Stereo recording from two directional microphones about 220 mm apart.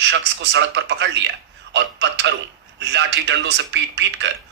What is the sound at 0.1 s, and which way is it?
Speech, 55° right (ahead or behind).